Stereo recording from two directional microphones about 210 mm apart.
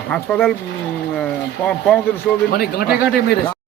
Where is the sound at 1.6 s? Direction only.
5° left (ahead or behind).